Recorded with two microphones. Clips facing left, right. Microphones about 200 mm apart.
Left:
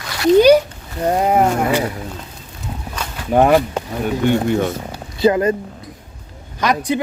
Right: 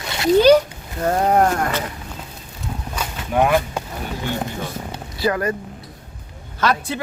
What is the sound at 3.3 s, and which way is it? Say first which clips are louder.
Speech: left 5 dB; 50° left (ahead or behind).